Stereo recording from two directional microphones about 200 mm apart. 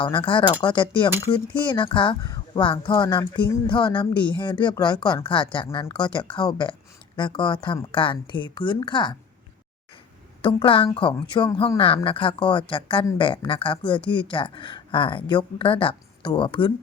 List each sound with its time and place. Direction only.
0.0 s speech: 25° left (ahead or behind)
10.4 s speech: 25° left (ahead or behind)